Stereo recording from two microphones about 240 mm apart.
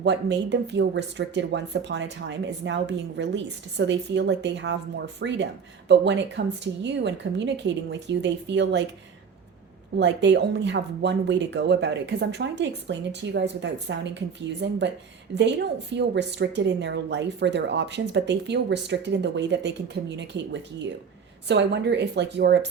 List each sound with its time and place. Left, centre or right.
0.0 s speech: right
10.0 s speech: right